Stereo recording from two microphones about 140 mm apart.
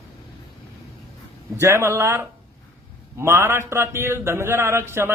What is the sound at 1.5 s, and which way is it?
A man's voice, 20° right (ahead or behind).